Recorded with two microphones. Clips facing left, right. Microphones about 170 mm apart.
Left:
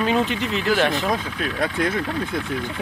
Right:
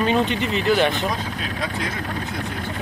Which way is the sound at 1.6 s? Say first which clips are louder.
Left 6 dB; 55° left (ahead or behind).